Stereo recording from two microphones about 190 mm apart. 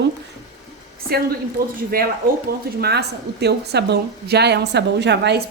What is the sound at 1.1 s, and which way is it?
A woman's voice, 55° right (ahead or behind).